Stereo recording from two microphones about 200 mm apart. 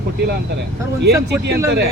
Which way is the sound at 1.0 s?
55° right (ahead or behind).